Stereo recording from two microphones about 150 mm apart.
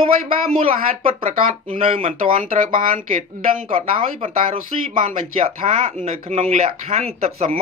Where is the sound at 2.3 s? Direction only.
55° right (ahead or behind).